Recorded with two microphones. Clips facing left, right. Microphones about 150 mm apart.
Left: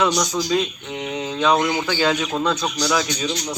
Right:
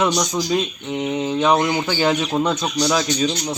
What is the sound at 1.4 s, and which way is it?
Speech, 25° right (ahead or behind).